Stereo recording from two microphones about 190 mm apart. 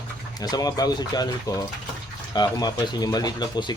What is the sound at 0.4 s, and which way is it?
Speech, 20° left (ahead or behind).